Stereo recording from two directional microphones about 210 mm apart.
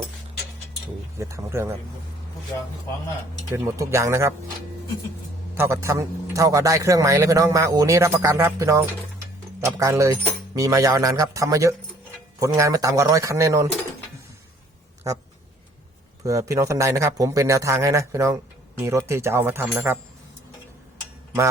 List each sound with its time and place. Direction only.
1.2 s a man's voice: 15° right (ahead or behind)
3.5 s a man's voice: 15° right (ahead or behind)
5.5 s a man's voice: 10° right (ahead or behind)
16.2 s a man's voice: 15° right (ahead or behind)